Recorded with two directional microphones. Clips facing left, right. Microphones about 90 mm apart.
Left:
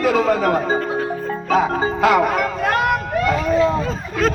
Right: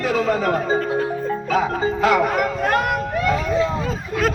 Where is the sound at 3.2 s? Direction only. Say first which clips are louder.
Left 3 dB; 50° left (ahead or behind).